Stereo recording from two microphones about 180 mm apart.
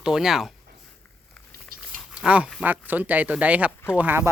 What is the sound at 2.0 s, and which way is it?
Speech, 5° right (ahead or behind).